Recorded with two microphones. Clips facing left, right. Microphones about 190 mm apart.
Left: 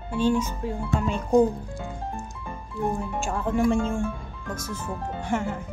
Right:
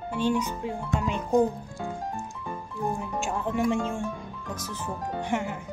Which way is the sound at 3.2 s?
20° right (ahead or behind).